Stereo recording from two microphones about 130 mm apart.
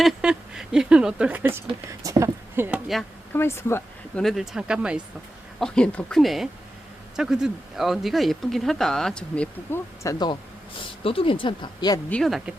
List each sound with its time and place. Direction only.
0.0 s speech: 5° right (ahead or behind); by 2.6 s 25° right (ahead or behind)
2.6 s speech: 5° right (ahead or behind)
3.3 s speech: 20° left (ahead or behind)
4.1 s speech: 5° left (ahead or behind)
5.5 s speech: 5° left (ahead or behind)
10.0 s speech: 30° left (ahead or behind)
10.8 s speech: 45° left (ahead or behind)
12.2 s speech: centre (ahead or behind)